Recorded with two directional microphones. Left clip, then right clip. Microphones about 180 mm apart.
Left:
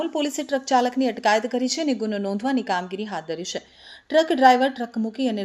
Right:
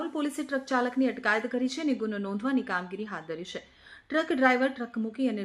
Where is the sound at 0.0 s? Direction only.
20° left (ahead or behind).